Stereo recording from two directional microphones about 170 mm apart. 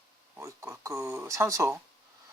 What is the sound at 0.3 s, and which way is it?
Speech, 15° right (ahead or behind).